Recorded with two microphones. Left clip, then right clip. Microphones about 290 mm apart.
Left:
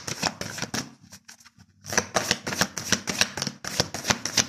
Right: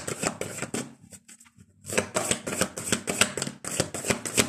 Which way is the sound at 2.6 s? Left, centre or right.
Centre.